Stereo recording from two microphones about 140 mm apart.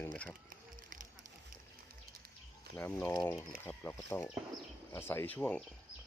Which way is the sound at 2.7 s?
10° left (ahead or behind).